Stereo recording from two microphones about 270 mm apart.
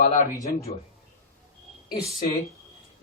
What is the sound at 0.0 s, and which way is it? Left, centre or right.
Speech, left.